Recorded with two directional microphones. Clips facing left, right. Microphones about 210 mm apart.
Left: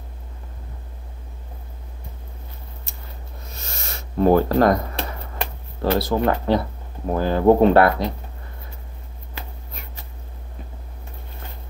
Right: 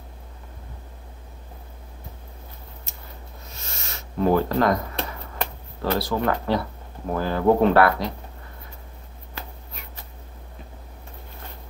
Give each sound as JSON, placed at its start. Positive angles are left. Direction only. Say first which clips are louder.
{"t": 3.8, "sound": "speech", "louder": "left 4 dB", "side_deg": 40}
{"t": 5.8, "sound": "speech", "louder": "left 4 dB", "side_deg": 25}